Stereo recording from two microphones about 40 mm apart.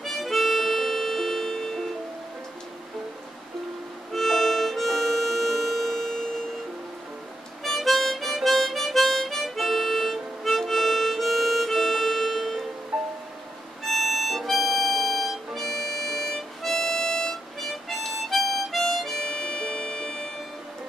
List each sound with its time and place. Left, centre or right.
0.0 s harmonica: centre
4.1 s harmonica: centre
7.6 s harmonica: centre
12.9 s music: centre
13.8 s harmonica: centre
19.2 s music: centre